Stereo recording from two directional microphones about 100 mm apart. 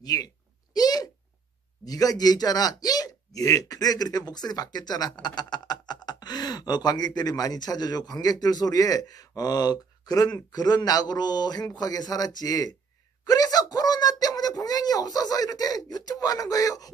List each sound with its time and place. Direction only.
0.0 s speech: 40° left (ahead or behind)